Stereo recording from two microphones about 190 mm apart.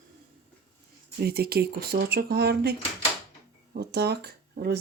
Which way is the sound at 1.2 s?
55° right (ahead or behind).